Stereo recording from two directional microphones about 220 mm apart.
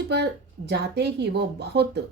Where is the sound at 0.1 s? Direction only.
50° right (ahead or behind).